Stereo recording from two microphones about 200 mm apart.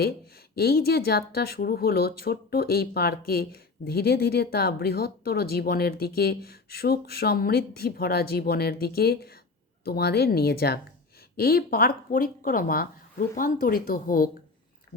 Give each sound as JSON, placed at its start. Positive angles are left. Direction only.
{"t": 0.5, "sound": "speech", "side_deg": 50}